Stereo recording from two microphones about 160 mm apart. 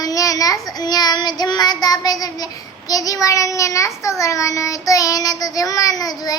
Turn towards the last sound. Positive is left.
turn(degrees=25)  # may be behind; listen again after turning